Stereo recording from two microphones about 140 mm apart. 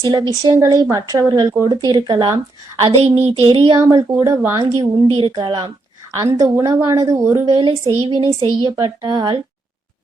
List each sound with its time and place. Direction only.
0.0 s a woman's voice: 30° right (ahead or behind)
2.8 s speech: 45° right (ahead or behind)
3.8 s a woman's voice: 25° right (ahead or behind)